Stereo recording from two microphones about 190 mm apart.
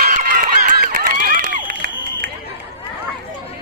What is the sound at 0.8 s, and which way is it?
Run, 50° right (ahead or behind).